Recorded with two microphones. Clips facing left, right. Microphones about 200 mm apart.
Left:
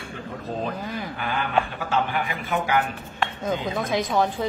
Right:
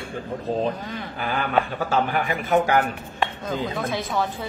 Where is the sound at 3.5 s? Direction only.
15° left (ahead or behind).